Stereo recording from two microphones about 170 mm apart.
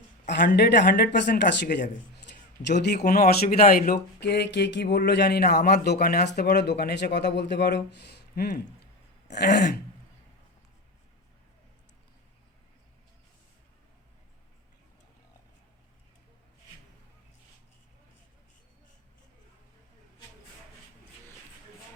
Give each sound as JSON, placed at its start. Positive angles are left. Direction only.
{"t": 0.3, "sound": "speech", "side_deg": 85}
{"t": 9.3, "sound": "speech", "side_deg": 80}